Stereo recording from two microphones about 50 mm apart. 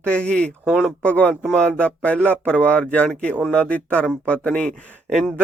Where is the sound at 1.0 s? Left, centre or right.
Left.